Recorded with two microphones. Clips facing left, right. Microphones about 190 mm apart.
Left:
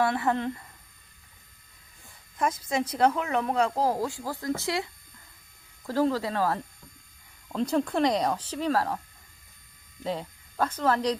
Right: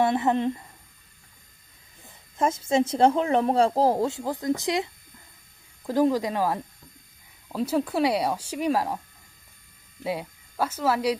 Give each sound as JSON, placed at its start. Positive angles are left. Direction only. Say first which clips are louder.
{"t": 0.0, "sound": "speech", "louder": "right 3 dB", "side_deg": -20}
{"t": 2.0, "sound": "speech", "louder": "right 3 dB", "side_deg": -25}
{"t": 10.0, "sound": "speech", "louder": "right 2 dB", "side_deg": -10}